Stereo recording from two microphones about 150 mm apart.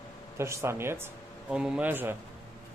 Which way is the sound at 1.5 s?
5° right (ahead or behind).